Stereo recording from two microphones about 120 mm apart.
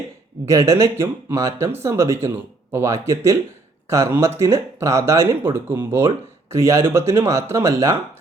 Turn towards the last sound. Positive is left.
turn(degrees=-20)  # may be behind; listen again after turning